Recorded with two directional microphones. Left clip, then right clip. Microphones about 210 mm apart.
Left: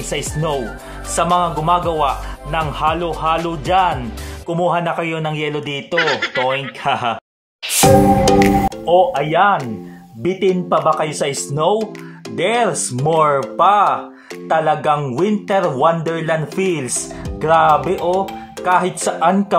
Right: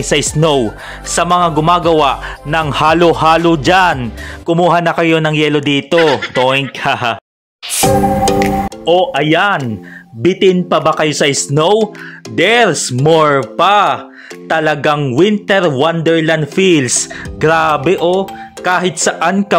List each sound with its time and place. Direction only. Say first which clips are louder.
0.0 s speech: right 9 dB; 45° right (ahead or behind)
5.9 s speech: right 5 dB; centre (ahead or behind)
6.8 s speech: right 4 dB; 40° right (ahead or behind)
7.8 s music: even; centre (ahead or behind)
8.8 s speech: right 4 dB; 45° right (ahead or behind)